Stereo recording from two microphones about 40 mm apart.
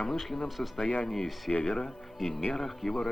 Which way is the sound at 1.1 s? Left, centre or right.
Centre.